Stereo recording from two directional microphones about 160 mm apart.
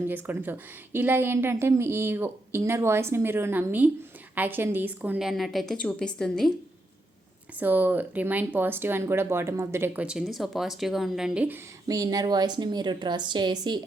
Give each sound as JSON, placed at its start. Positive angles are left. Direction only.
{"t": 0.1, "sound": "a woman's voice", "side_deg": -10}
{"t": 7.6, "sound": "speech", "side_deg": -10}
{"t": 11.9, "sound": "a woman's voice", "side_deg": -20}